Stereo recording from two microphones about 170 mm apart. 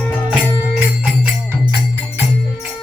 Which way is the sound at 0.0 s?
10° left (ahead or behind).